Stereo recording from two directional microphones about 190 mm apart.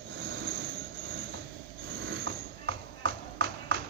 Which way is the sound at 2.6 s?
60° right (ahead or behind).